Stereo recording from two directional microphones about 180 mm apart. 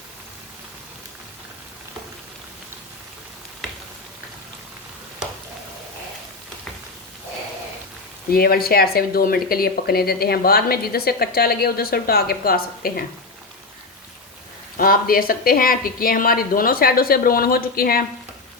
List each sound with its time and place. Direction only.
8.3 s speech: 55° left (ahead or behind)
14.8 s a woman's voice: 55° left (ahead or behind)